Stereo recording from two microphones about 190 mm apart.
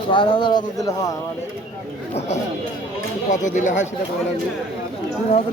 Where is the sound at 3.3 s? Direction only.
40° left (ahead or behind).